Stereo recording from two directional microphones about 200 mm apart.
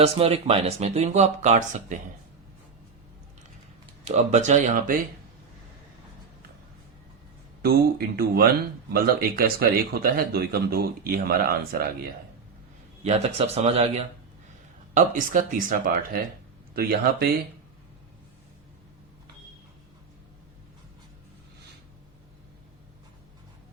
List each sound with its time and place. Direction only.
0.0 s speech: 30° right (ahead or behind)
4.0 s speech: 30° right (ahead or behind)
7.6 s speech: 50° right (ahead or behind)
13.1 s speech: 30° right (ahead or behind); by 17.2 s 50° right (ahead or behind)